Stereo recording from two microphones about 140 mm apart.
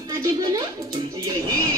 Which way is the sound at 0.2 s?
25° right (ahead or behind).